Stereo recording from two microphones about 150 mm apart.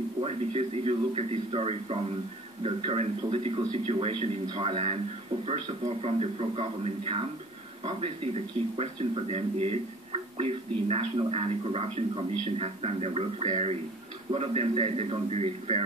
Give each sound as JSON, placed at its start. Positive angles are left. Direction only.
{"t": 0.2, "sound": "a man's voice", "side_deg": -40}